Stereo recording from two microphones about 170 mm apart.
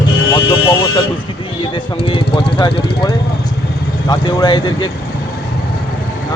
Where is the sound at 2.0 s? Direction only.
30° left (ahead or behind).